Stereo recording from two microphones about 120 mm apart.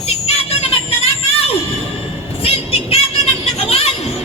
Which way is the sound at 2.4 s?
55° left (ahead or behind).